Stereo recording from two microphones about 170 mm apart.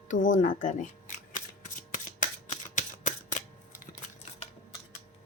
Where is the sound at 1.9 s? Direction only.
50° left (ahead or behind).